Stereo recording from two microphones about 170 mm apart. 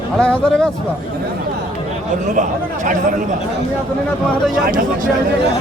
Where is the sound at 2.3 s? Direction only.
50° right (ahead or behind).